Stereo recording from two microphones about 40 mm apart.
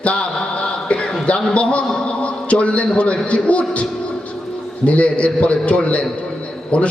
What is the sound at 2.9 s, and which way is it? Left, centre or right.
Speech, left.